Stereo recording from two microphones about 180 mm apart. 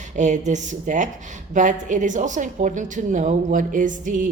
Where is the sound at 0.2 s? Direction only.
40° right (ahead or behind).